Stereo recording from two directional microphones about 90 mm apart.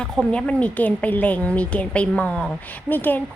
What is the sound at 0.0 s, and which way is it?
A woman's voice, 10° left (ahead or behind).